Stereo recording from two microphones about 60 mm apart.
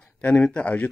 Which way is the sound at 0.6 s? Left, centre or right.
Left.